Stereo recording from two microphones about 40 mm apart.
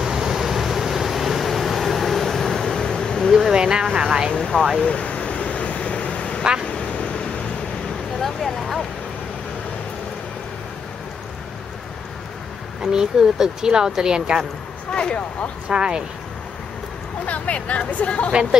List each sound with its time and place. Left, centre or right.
0.0 s vehicle: centre
3.5 s a sound: centre
4.3 s speech: centre
4.8 s a sound: left
8.2 s a sound: centre
12.8 s speech: centre
14.9 s speech: left
15.7 s speech: right
17.3 s speech: left
18.3 s speech: centre